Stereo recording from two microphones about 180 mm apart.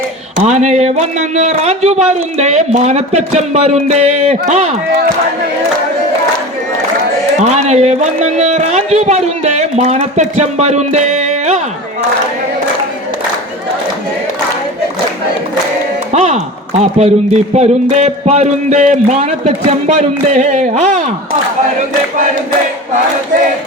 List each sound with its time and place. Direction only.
0.3 s speech: 40° right (ahead or behind)
7.3 s speech: 40° right (ahead or behind)
16.1 s speech: 40° right (ahead or behind)